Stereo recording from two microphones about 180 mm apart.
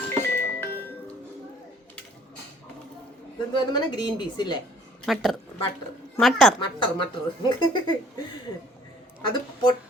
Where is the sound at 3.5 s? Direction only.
25° left (ahead or behind).